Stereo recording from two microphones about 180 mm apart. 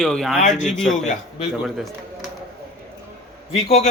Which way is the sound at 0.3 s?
40° left (ahead or behind).